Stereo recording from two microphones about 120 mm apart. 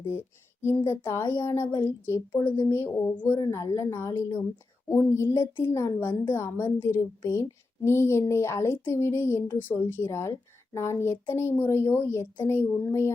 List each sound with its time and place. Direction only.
0.9 s a woman's voice: 20° left (ahead or behind)